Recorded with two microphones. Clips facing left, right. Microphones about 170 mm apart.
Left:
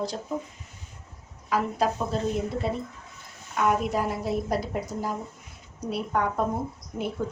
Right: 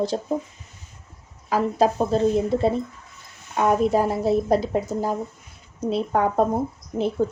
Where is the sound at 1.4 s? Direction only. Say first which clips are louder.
Right 5 dB; 30° right (ahead or behind).